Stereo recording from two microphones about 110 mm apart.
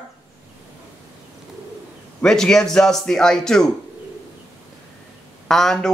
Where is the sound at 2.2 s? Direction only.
5° left (ahead or behind).